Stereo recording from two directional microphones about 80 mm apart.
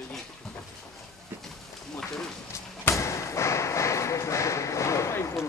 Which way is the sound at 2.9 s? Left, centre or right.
Left.